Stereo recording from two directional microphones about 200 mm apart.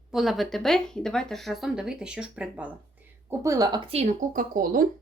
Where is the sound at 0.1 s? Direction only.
Centre (ahead or behind).